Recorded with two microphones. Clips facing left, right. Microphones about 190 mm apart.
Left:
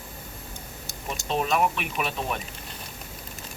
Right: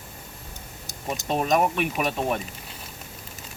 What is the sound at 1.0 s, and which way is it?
Speech, 45° right (ahead or behind).